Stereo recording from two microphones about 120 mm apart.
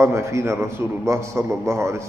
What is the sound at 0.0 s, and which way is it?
A man's voice, 25° right (ahead or behind).